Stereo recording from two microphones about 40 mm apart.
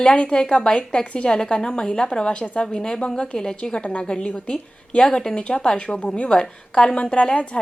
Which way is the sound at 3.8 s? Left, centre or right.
Left.